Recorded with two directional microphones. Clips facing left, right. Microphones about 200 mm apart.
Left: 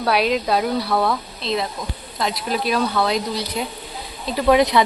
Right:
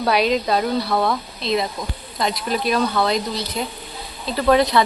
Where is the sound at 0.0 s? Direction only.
5° left (ahead or behind).